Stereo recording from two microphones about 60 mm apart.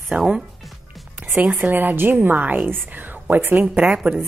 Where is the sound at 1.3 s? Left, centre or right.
Right.